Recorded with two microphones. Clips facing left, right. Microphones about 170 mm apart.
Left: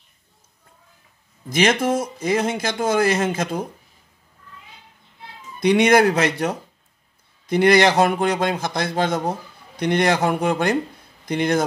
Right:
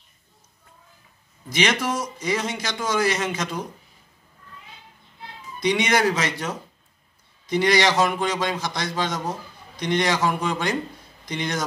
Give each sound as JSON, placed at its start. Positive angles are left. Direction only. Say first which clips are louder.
{"t": 1.5, "sound": "speech", "louder": "left 5 dB", "side_deg": 50}
{"t": 5.6, "sound": "a man's voice", "louder": "left 6 dB", "side_deg": 55}